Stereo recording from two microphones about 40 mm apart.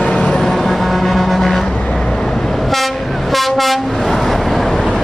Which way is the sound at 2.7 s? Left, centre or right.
Centre.